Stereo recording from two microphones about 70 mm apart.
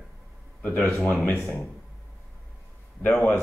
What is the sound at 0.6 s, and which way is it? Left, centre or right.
Speech, left.